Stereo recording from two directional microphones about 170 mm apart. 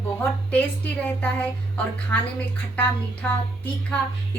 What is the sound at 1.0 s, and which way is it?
A woman's voice, 10° left (ahead or behind).